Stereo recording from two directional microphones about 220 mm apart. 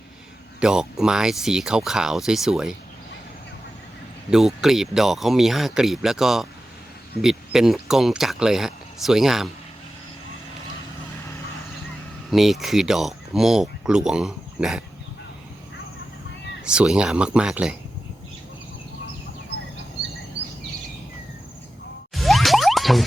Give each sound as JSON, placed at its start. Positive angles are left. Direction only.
{"t": 0.6, "sound": "speech", "side_deg": -5}
{"t": 4.3, "sound": "speech", "side_deg": 0}
{"t": 12.3, "sound": "speech", "side_deg": 0}
{"t": 16.6, "sound": "speech", "side_deg": -5}
{"t": 20.4, "sound": "bird vocalization", "side_deg": -50}
{"t": 22.1, "sound": "a sound", "side_deg": 0}